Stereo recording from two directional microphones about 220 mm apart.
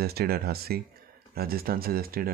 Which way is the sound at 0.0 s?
45° right (ahead or behind).